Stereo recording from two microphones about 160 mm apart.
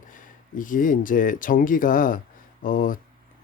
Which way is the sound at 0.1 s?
55° left (ahead or behind).